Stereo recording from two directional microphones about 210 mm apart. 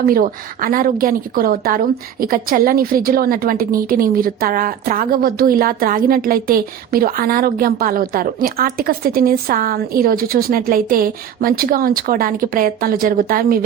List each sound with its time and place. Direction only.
0.0 s speech: 40° right (ahead or behind)